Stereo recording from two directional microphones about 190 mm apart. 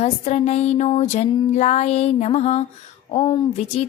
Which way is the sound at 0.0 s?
35° left (ahead or behind).